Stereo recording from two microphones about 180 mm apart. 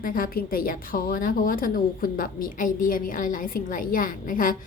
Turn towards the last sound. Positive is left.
turn(degrees=50)  # may be behind; listen again after turning